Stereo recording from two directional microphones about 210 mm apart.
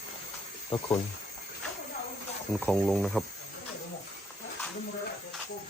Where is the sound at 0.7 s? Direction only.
25° left (ahead or behind).